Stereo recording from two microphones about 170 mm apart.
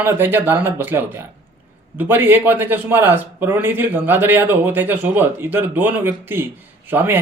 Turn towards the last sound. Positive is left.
turn(degrees=-10)  # may be behind; listen again after turning